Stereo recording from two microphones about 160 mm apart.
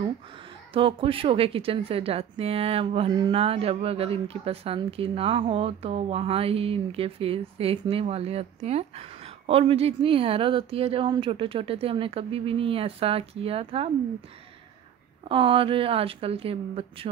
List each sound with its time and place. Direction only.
0.7 s a woman's voice: 35° right (ahead or behind)
15.2 s a woman's voice: 35° right (ahead or behind)